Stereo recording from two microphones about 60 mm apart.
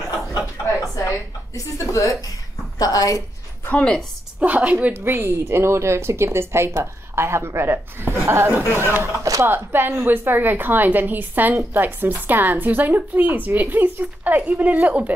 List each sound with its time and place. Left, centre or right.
0.9 s a sound: left
2.8 s a woman's voice: left
3.7 s a woman's voice: centre
4.4 s a woman's voice: right
5.0 s a woman's voice: right
9.2 s speech: right
9.5 s a woman's voice: right